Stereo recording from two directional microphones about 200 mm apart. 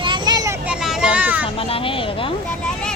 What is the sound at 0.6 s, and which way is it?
Children playing, 5° right (ahead or behind).